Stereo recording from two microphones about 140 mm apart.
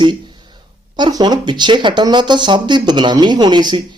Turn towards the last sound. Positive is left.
turn(degrees=-30)  # may be behind; listen again after turning